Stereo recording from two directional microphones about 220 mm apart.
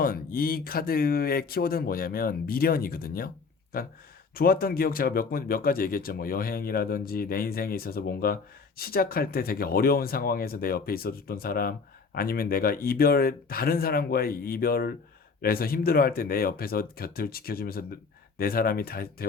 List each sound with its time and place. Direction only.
0.0 s speech: 40° left (ahead or behind)